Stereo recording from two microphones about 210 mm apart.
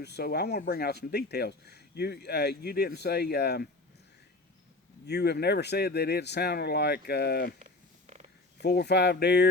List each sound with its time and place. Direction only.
0.0 s speech: 50° left (ahead or behind)
5.0 s speech: 50° left (ahead or behind)
7.6 s purr: 30° right (ahead or behind)
8.6 s speech: 50° left (ahead or behind)